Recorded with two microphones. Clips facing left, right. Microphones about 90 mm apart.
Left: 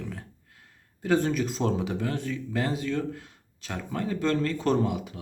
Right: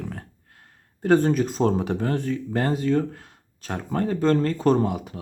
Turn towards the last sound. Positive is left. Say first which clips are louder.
# right 3 dB
turn(degrees=-40)  # may be behind; listen again after turning